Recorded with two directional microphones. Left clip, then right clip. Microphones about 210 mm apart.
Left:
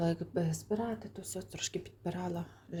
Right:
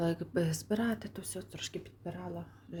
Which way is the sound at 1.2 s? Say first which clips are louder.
Left 2 dB; 5° right (ahead or behind).